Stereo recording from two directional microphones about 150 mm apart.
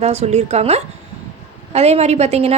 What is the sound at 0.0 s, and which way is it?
A woman's voice, 45° right (ahead or behind).